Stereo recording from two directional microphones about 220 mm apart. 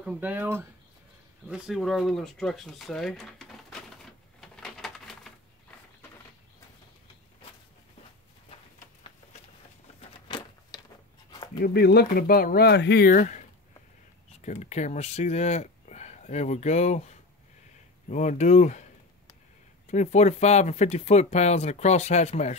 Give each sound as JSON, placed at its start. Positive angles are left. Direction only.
{"t": 0.0, "sound": "speech", "side_deg": -5}
{"t": 1.5, "sound": "a sound", "side_deg": 0}
{"t": 10.2, "sound": "a sound", "side_deg": 20}
{"t": 11.6, "sound": "speech", "side_deg": 45}
{"t": 18.1, "sound": "speech", "side_deg": 30}
{"t": 19.9, "sound": "speech", "side_deg": 30}